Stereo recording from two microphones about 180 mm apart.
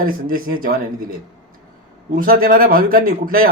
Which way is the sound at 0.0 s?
50° right (ahead or behind).